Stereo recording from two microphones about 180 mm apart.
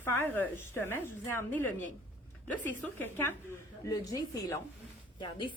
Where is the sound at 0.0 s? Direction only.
10° left (ahead or behind).